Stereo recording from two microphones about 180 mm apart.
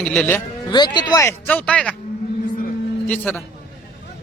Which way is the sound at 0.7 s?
25° left (ahead or behind).